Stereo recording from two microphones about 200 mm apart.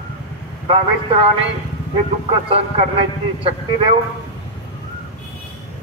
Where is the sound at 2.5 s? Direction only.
30° right (ahead or behind).